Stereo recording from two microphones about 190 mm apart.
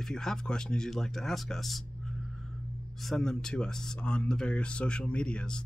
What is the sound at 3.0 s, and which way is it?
Speech, centre (ahead or behind).